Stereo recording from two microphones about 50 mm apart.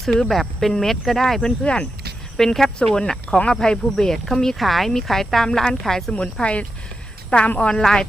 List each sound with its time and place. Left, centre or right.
0.0 s speech: centre
1.6 s speech: left
2.4 s speech: centre
6.4 s a woman's voice: left